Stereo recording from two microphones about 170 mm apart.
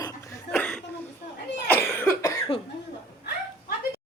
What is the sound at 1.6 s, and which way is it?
Cough, 10° left (ahead or behind).